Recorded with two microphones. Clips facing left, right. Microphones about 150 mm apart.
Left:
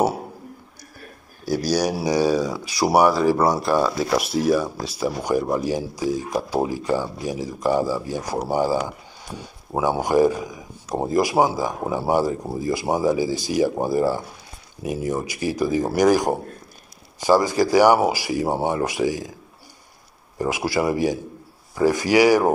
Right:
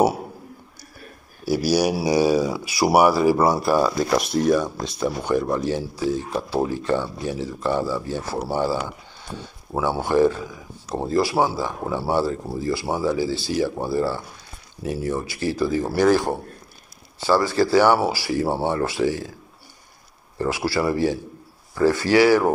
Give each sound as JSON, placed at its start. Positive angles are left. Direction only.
{"t": 1.4, "sound": "speech", "side_deg": -5}
{"t": 20.3, "sound": "speech", "side_deg": 15}